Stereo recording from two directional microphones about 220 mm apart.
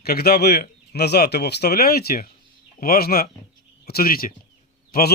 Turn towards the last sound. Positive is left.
turn(degrees=45)  # may be behind; listen again after turning